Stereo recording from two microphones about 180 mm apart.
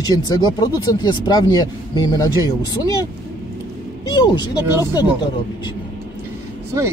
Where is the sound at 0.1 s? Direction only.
20° left (ahead or behind).